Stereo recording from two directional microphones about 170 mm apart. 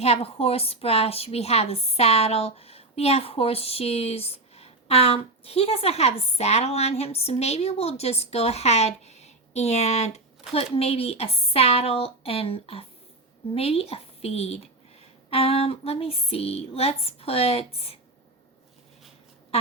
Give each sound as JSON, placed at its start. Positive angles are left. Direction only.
{"t": 0.0, "sound": "a woman's voice", "side_deg": 35}